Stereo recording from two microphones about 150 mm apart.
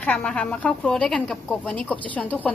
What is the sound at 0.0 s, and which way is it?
A woman's voice, 10° left (ahead or behind).